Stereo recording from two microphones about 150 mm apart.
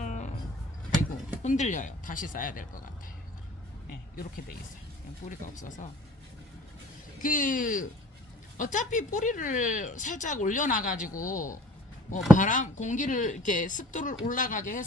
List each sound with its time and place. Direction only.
0.0 s a sound: 55° left (ahead or behind)
1.4 s speech: 50° left (ahead or behind)
4.1 s speech: 70° left (ahead or behind)
5.3 s speech: 60° left (ahead or behind)
7.2 s speech: 60° left (ahead or behind)